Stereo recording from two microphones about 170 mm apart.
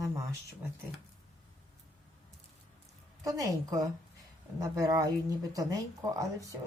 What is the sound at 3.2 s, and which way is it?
Speech, 20° right (ahead or behind).